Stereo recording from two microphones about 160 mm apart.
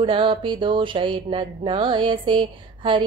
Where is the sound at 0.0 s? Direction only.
30° right (ahead or behind).